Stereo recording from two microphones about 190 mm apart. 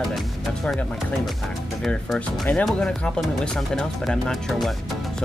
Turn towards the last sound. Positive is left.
turn(degrees=0)  # may be behind; listen again after turning